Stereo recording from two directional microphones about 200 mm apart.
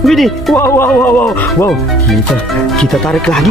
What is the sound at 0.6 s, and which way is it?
Speech, 10° left (ahead or behind).